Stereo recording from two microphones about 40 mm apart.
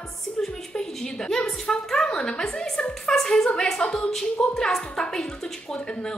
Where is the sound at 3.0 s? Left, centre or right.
Centre.